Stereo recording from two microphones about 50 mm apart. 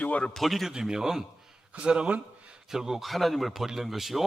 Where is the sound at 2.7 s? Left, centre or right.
Centre.